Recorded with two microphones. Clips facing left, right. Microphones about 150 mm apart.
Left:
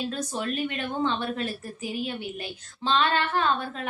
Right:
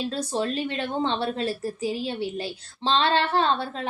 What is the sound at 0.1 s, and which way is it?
A woman's voice, 30° right (ahead or behind).